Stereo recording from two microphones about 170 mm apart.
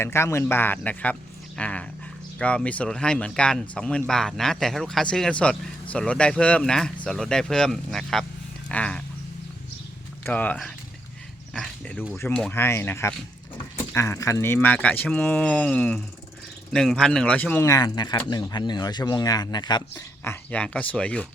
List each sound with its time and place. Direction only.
0.0 s speech: 15° left (ahead or behind)
1.5 s a sound: 5° left (ahead or behind)
2.4 s speech: 5° left (ahead or behind)
10.2 s speech: 10° left (ahead or behind)
11.5 s dog: 5° left (ahead or behind)
12.3 s speech: 10° left (ahead or behind)